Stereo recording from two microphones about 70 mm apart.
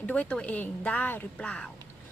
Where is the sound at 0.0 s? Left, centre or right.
Left.